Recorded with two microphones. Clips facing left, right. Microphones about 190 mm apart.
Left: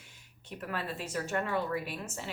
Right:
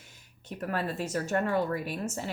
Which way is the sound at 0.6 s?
45° right (ahead or behind).